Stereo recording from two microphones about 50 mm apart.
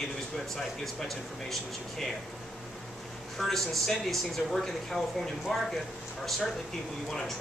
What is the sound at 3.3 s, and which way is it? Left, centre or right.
Speech, centre.